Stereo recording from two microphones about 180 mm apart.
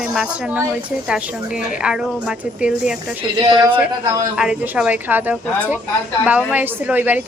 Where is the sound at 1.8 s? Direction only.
5° right (ahead or behind).